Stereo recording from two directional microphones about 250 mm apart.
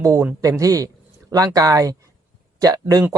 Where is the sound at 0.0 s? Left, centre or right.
Centre.